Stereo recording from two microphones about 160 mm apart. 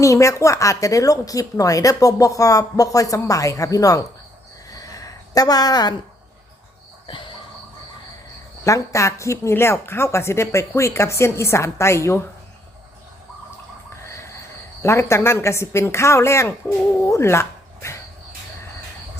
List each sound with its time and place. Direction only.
0.0 s speech: 20° left (ahead or behind)
4.7 s a sound: 20° left (ahead or behind)
8.6 s a woman's voice: 20° left (ahead or behind)
14.8 s a woman's voice: 15° left (ahead or behind)